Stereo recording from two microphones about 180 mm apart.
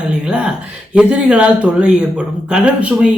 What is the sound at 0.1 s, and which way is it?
A woman's voice, 5° right (ahead or behind).